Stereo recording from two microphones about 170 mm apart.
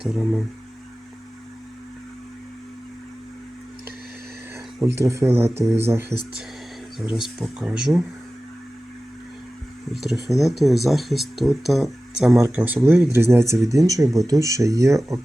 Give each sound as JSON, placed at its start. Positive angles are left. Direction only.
{"t": 0.0, "sound": "speech", "side_deg": 0}
{"t": 4.9, "sound": "speech", "side_deg": -15}
{"t": 7.0, "sound": "speech", "side_deg": -5}
{"t": 9.9, "sound": "speech", "side_deg": 0}